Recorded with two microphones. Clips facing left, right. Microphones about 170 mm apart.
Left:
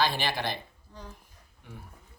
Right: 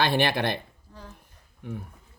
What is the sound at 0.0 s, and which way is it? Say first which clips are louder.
Speech: right 5 dB; 60° right (ahead or behind).